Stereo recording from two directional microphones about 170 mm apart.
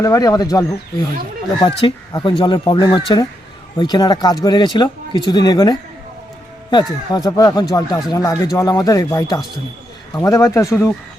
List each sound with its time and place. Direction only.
0.0 s speech: 20° left (ahead or behind)